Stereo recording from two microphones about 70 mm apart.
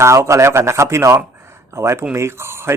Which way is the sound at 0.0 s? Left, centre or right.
Right.